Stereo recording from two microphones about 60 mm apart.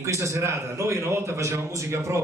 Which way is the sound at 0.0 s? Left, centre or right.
Right.